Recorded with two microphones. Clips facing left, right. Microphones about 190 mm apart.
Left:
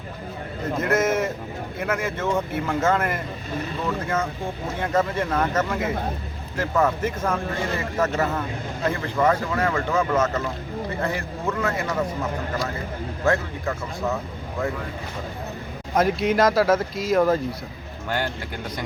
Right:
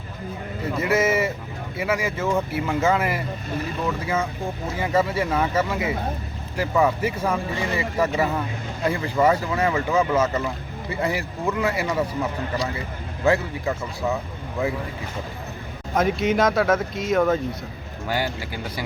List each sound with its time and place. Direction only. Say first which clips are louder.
0.6 s a man's voice: even; 5° right (ahead or behind)
13.2 s speech: right 2 dB; 10° right (ahead or behind)
16.0 s speech: left 1 dB; centre (ahead or behind)